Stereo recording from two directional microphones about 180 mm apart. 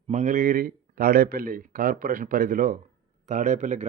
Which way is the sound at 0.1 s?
45° right (ahead or behind).